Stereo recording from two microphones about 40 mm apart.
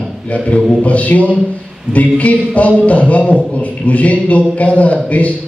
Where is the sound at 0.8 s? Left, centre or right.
Left.